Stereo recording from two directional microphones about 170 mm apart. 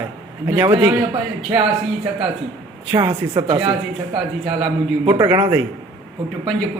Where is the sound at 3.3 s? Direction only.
30° right (ahead or behind).